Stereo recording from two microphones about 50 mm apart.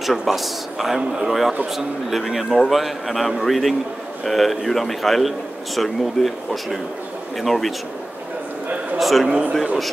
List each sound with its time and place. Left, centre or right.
0.0 s a man's voice: centre
8.9 s a man's voice: centre